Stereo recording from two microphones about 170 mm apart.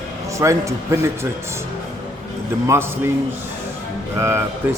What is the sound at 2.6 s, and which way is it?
Speech, 15° right (ahead or behind).